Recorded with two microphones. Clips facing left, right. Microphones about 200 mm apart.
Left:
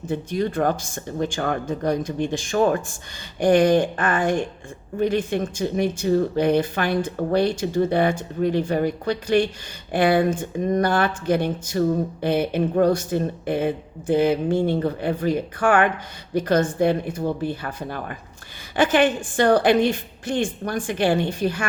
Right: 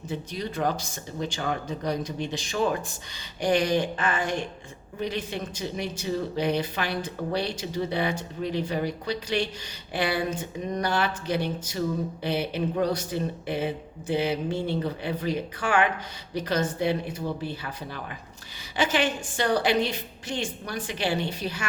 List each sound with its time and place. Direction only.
0.1 s speech: 50° left (ahead or behind)